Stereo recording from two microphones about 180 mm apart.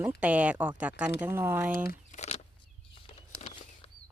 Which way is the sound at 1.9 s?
40° left (ahead or behind).